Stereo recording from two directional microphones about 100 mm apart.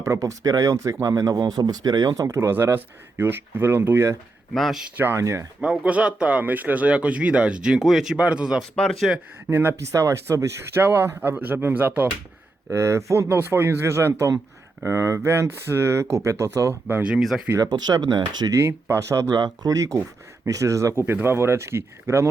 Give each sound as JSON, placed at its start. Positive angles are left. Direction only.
{"t": 0.0, "sound": "speech", "side_deg": -30}
{"t": 4.5, "sound": "speech", "side_deg": 0}
{"t": 4.9, "sound": "speech", "side_deg": -20}
{"t": 5.5, "sound": "speech", "side_deg": -10}
{"t": 8.7, "sound": "speech", "side_deg": 5}
{"t": 9.5, "sound": "speech", "side_deg": -20}
{"t": 12.7, "sound": "speech", "side_deg": -30}
{"t": 16.9, "sound": "speech", "side_deg": -10}
{"t": 17.6, "sound": "speech", "side_deg": -45}
{"t": 18.5, "sound": "speech", "side_deg": -30}